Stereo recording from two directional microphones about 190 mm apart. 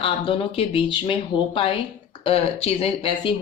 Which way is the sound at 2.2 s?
30° left (ahead or behind).